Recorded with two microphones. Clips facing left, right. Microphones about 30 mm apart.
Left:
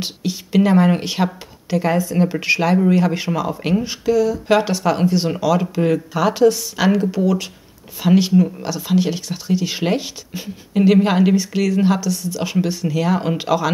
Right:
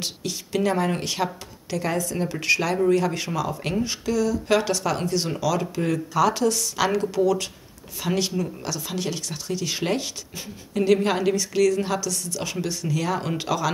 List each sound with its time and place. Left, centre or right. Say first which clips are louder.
0.0 s speech: left 5 dB; centre